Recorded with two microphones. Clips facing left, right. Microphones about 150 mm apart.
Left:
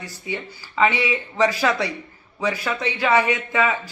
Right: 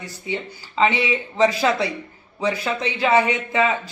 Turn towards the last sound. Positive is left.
turn(degrees=-20)  # may be behind; listen again after turning